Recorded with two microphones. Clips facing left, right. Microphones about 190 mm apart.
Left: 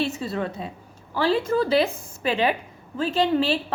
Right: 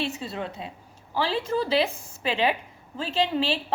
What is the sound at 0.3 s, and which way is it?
A woman's voice, 45° left (ahead or behind).